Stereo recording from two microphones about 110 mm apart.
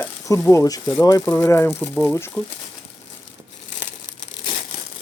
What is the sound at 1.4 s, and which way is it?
Speech, 20° left (ahead or behind).